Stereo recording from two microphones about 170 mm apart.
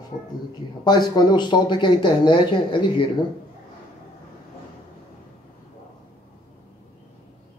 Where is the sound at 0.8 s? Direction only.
25° left (ahead or behind).